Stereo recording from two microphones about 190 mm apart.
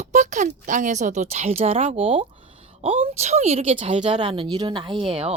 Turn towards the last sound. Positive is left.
turn(degrees=-30)  # may be behind; listen again after turning